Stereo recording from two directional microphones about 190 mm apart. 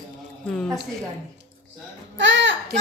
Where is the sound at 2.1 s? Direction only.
70° right (ahead or behind).